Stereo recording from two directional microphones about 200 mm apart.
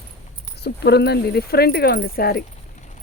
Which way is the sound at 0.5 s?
55° left (ahead or behind).